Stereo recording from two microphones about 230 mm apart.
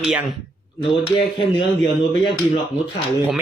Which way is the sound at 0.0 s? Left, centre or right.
Centre.